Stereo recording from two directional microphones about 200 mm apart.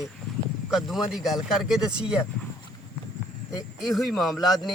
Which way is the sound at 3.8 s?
Centre (ahead or behind).